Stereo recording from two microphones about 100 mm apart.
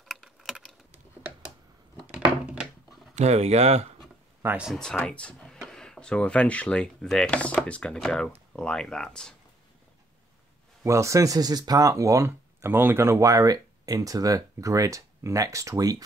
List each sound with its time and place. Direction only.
0.1 s a sound: 5° right (ahead or behind)
2.0 s a sound: 10° right (ahead or behind)
3.3 s speech: 90° right
4.4 s speech: 25° right (ahead or behind)
5.0 s speech: 10° left (ahead or behind)
10.8 s speech: 30° right (ahead or behind)